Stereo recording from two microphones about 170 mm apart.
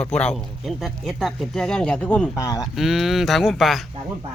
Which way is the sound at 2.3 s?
20° left (ahead or behind).